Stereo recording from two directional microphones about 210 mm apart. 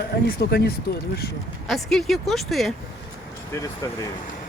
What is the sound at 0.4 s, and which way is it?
Speech, 50° left (ahead or behind).